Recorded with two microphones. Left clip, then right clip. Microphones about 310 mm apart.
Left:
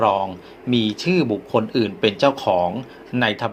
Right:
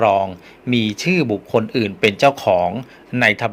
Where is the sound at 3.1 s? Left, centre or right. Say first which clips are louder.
Right 5 dB; right.